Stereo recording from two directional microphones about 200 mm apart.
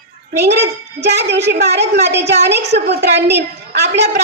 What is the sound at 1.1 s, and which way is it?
Speech, 55° right (ahead or behind).